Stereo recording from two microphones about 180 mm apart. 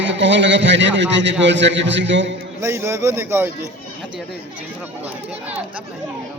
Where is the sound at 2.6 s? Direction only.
15° right (ahead or behind).